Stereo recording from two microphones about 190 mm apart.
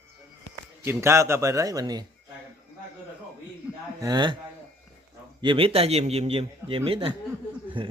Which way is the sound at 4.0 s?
20° right (ahead or behind).